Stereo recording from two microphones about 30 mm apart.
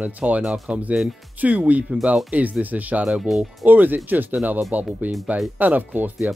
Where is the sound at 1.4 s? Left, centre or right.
Right.